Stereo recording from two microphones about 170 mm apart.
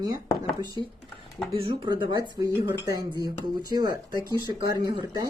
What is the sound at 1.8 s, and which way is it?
Speech, 25° right (ahead or behind).